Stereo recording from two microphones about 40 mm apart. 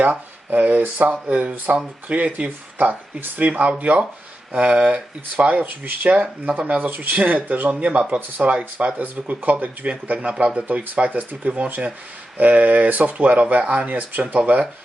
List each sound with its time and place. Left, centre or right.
0.0 s speech: right
1.3 s speech: right
2.7 s speech: right
12.4 s speech: right